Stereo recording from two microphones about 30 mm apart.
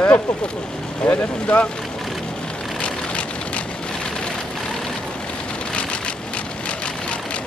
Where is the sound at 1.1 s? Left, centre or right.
Left.